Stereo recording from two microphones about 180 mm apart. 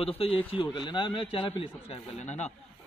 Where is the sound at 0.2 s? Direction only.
30° left (ahead or behind).